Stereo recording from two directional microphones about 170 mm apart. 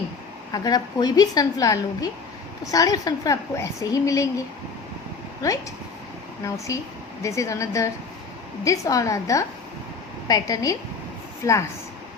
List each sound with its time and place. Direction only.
0.5 s a woman's voice: 25° left (ahead or behind)
6.7 s a woman's voice: 20° left (ahead or behind)